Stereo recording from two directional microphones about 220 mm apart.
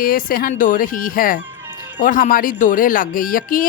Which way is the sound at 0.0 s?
40° left (ahead or behind).